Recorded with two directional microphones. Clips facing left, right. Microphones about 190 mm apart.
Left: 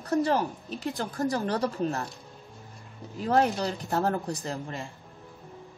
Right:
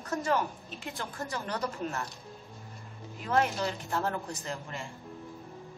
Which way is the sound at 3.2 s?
35° left (ahead or behind).